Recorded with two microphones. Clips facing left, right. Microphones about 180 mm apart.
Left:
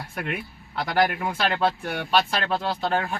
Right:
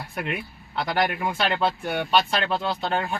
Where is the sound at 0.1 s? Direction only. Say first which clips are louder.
Right 1 dB; centre (ahead or behind).